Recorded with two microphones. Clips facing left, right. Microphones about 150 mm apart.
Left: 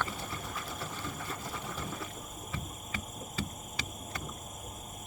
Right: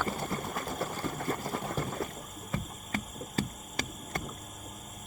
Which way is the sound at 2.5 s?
45° right (ahead or behind).